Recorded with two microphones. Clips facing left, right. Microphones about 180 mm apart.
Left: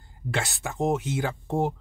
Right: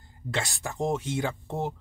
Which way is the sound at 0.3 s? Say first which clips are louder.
Left 2 dB; 5° left (ahead or behind).